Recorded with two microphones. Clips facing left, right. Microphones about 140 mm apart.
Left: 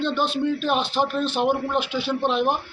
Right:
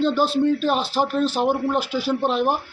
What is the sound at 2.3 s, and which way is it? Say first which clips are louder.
Speech: even; 5° right (ahead or behind).